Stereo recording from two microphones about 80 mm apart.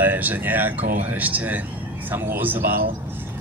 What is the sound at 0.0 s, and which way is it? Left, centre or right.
A man's voice, right.